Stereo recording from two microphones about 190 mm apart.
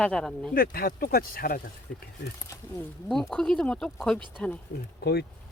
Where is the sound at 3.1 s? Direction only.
Centre (ahead or behind).